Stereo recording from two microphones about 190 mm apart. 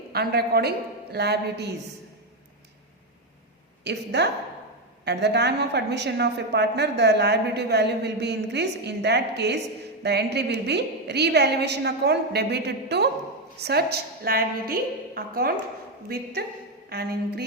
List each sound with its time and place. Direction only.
0.1 s a woman's voice: 55° right (ahead or behind)
3.8 s a woman's voice: 60° right (ahead or behind)